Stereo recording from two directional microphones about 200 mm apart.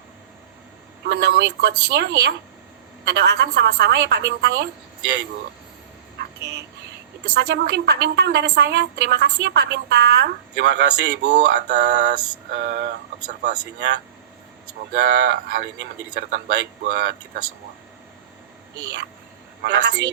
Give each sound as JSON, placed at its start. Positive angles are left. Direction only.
{"t": 1.0, "sound": "a woman's voice", "side_deg": -50}
{"t": 6.1, "sound": "a sound", "side_deg": -60}
{"t": 7.3, "sound": "a woman's voice", "side_deg": -55}
{"t": 11.3, "sound": "a sound", "side_deg": -40}
{"t": 11.7, "sound": "a woman's voice", "side_deg": -60}
{"t": 19.6, "sound": "a woman's voice", "side_deg": -60}